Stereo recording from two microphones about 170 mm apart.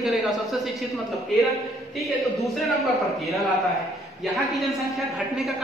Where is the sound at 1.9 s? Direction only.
Centre (ahead or behind).